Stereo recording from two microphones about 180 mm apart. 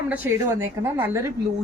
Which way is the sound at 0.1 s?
10° right (ahead or behind).